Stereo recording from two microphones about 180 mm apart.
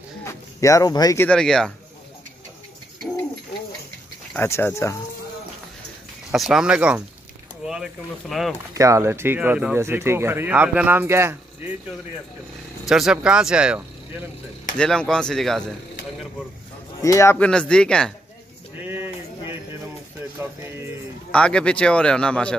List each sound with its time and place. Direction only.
0.2 s a sound: 15° left (ahead or behind)
1.2 s speech: 5° left (ahead or behind)
4.3 s speech: 15° left (ahead or behind)
6.3 s speech: centre (ahead or behind)
8.7 s speech: 15° right (ahead or behind)
12.8 s speech: centre (ahead or behind)
17.0 s speech: 15° left (ahead or behind)
18.8 s a sound: 10° right (ahead or behind)
21.3 s speech: 5° left (ahead or behind)